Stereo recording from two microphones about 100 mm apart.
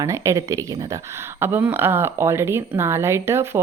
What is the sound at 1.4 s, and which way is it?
Speech, 20° right (ahead or behind).